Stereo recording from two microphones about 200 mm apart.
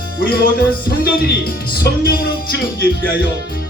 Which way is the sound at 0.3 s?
50° left (ahead or behind).